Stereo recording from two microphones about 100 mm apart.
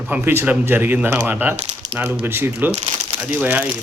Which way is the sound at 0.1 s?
20° right (ahead or behind).